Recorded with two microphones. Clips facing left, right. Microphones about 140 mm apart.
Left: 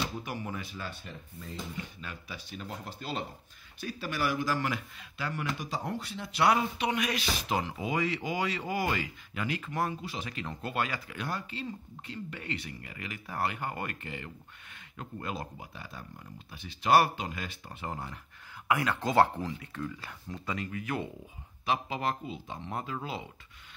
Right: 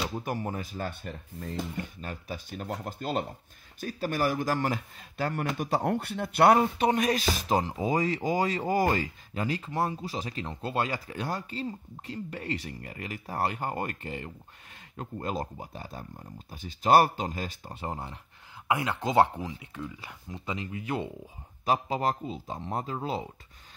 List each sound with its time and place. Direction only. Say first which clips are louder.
0.2 s speech: right 5 dB; 45° right (ahead or behind)
5.6 s speech: right 8 dB; 60° right (ahead or behind); by 21.1 s 25° right (ahead or behind)
21.6 s speech: right 4 dB; 35° right (ahead or behind)